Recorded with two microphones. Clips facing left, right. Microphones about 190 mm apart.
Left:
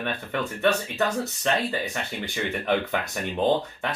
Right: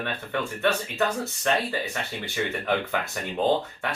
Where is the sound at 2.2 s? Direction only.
15° left (ahead or behind).